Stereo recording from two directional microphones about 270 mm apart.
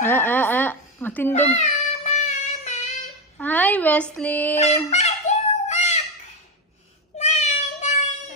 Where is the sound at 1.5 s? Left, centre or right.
Left.